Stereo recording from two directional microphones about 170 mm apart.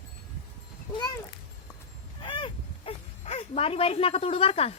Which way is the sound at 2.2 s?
30° left (ahead or behind).